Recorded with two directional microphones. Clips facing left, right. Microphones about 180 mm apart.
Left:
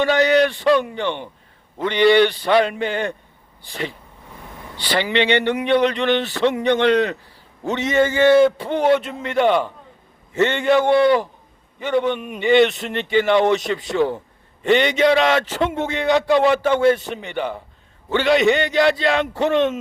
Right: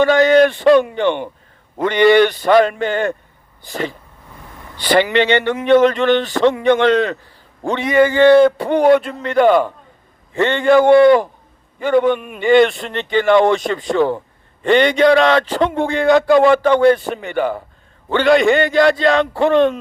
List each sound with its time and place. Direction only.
0.0 s speech: 45° right (ahead or behind)
6.9 s a man's voice: 20° left (ahead or behind)
7.6 s speech: 45° right (ahead or behind)